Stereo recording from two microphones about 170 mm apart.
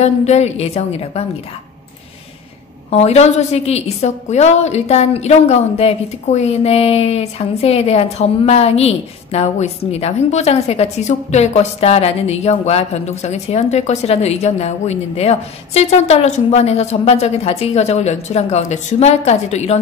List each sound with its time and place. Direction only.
0.0 s a woman's voice: 40° left (ahead or behind)
2.9 s a woman's voice: 40° left (ahead or behind)